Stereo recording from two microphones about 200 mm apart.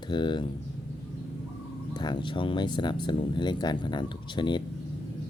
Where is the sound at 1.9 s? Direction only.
20° left (ahead or behind).